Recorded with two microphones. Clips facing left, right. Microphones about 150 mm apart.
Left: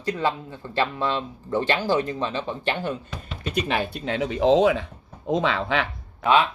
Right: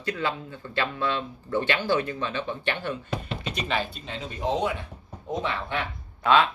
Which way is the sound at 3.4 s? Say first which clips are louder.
Left 7 dB; 55° left (ahead or behind).